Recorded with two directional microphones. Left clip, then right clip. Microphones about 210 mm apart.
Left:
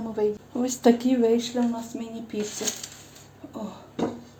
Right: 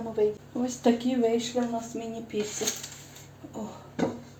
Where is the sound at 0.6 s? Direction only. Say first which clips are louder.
Left 5 dB; 55° left (ahead or behind).